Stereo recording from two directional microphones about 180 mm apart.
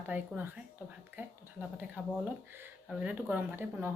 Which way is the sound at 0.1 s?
10° right (ahead or behind).